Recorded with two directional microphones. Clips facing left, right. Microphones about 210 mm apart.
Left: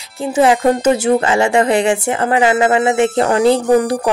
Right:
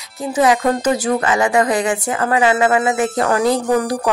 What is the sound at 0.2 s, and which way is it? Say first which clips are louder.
A woman's voice: left 3 dB; 30° left (ahead or behind).